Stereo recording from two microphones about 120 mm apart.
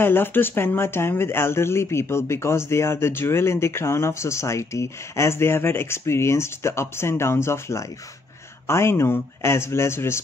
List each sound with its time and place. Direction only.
0.0 s speech: 20° left (ahead or behind)